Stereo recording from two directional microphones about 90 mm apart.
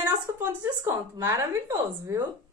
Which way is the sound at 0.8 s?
35° right (ahead or behind).